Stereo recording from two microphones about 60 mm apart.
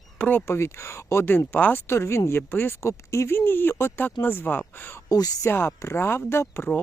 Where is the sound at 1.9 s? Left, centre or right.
Left.